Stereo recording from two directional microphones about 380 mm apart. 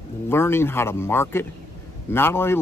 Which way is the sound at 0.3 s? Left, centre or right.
Centre.